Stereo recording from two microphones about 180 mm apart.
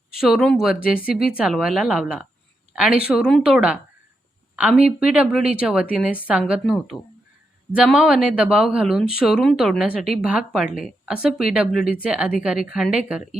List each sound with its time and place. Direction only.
0.2 s a woman's voice: centre (ahead or behind)
0.9 s speech: 55° left (ahead or behind)
1.3 s a woman's voice: 5° right (ahead or behind)